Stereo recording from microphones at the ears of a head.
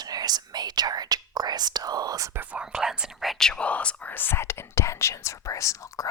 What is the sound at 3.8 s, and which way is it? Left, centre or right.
Speech, left.